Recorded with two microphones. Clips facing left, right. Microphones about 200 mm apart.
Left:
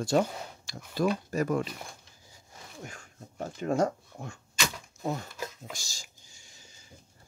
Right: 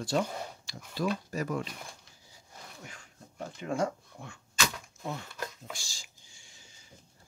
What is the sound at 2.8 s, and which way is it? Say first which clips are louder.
Speech: left 5 dB; 45° left (ahead or behind).